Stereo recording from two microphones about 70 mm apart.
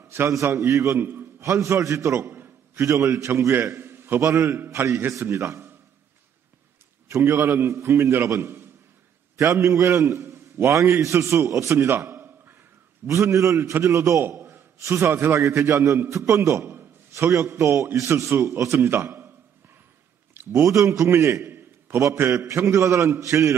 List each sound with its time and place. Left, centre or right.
0.0 s a sound: right
0.3 s a man's voice: right
0.9 s a man's voice: right
1.4 s a man's voice: right
2.7 s a man's voice: right
4.2 s a man's voice: right
7.1 s a man's voice: right
13.0 s a man's voice: right
14.9 s a man's voice: right
17.1 s a man's voice: right
20.6 s a man's voice: right
22.7 s a man's voice: right